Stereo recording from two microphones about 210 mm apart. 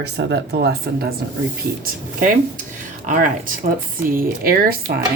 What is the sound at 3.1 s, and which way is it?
Speech, 40° right (ahead or behind).